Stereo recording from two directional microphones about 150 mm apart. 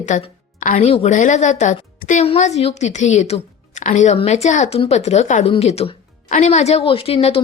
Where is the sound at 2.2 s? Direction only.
45° left (ahead or behind).